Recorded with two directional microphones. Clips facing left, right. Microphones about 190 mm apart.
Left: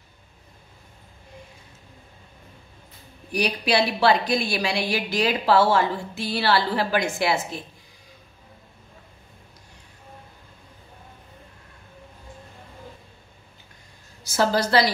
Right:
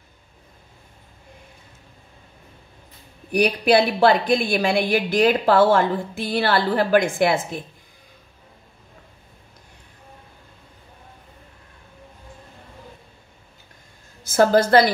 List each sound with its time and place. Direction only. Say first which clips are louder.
3.3 s a woman's voice: right 6 dB; 55° right (ahead or behind)
14.2 s a woman's voice: right 6 dB; 50° right (ahead or behind)